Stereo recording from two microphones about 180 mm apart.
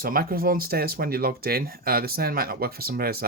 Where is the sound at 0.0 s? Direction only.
55° right (ahead or behind).